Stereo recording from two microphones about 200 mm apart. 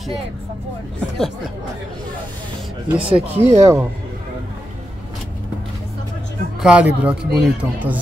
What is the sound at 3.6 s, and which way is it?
Speech, 15° right (ahead or behind).